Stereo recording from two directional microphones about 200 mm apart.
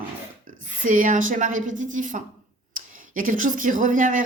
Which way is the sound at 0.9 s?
40° right (ahead or behind).